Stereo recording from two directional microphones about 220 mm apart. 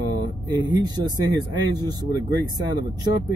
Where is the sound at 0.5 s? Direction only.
20° right (ahead or behind).